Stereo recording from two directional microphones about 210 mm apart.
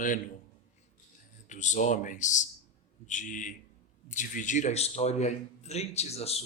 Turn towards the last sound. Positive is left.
turn(degrees=30)  # may be behind; listen again after turning